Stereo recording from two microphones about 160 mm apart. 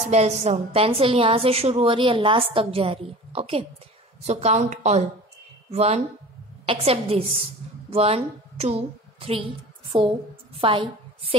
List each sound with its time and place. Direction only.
0.1 s a woman's voice: 45° right (ahead or behind)